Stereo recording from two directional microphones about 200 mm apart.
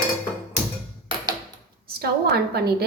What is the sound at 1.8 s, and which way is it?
Speech, 50° right (ahead or behind).